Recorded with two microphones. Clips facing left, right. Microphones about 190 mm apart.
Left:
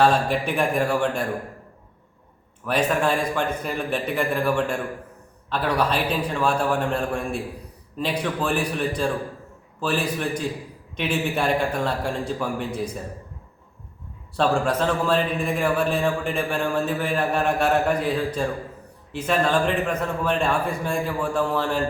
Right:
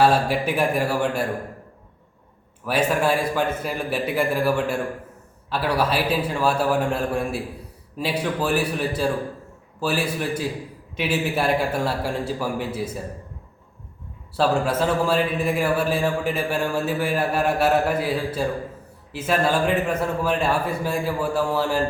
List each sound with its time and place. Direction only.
0.0 s a man's voice: 5° right (ahead or behind)
2.6 s a man's voice: 5° right (ahead or behind)
14.3 s a man's voice: 5° right (ahead or behind)